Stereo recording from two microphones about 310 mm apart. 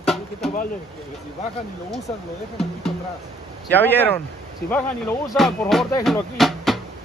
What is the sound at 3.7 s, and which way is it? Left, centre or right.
Speech, centre.